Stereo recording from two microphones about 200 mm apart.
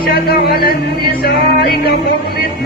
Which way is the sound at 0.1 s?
50° left (ahead or behind).